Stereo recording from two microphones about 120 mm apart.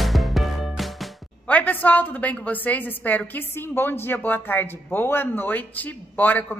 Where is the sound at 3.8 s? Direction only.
15° left (ahead or behind).